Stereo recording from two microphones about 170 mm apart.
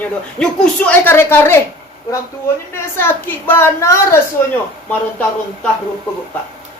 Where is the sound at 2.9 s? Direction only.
15° left (ahead or behind).